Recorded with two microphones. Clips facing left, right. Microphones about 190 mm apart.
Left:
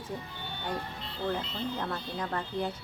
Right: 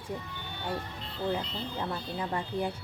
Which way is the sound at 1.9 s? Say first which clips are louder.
Right 1 dB; 10° right (ahead or behind).